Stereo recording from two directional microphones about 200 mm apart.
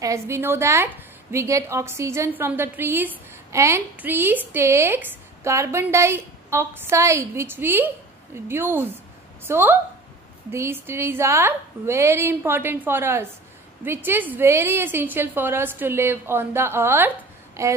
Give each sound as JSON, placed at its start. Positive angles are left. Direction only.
{"t": 0.0, "sound": "a woman's voice", "side_deg": -15}